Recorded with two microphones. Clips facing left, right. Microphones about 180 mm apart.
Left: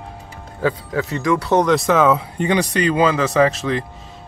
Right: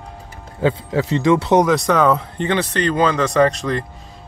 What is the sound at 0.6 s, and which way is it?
Speech, 25° right (ahead or behind).